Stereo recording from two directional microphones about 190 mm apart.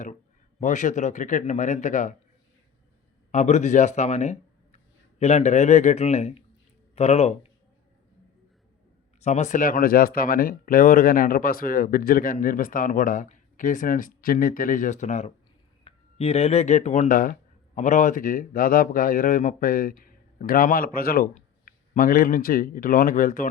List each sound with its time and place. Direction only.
0.6 s a man's voice: 40° left (ahead or behind)
3.3 s a man's voice: 35° left (ahead or behind)
9.2 s speech: 35° left (ahead or behind)